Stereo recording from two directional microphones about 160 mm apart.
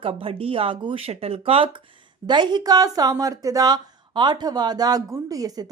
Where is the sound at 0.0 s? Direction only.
35° right (ahead or behind).